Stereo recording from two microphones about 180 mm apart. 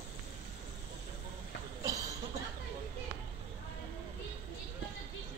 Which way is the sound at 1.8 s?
20° right (ahead or behind).